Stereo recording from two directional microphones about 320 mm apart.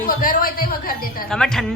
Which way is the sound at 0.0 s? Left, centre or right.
Left.